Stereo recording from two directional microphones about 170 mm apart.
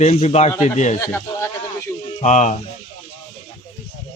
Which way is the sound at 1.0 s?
15° left (ahead or behind).